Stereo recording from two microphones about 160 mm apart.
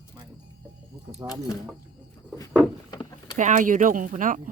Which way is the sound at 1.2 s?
25° right (ahead or behind).